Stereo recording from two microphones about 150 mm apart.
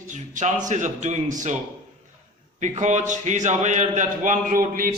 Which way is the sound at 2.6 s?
55° right (ahead or behind).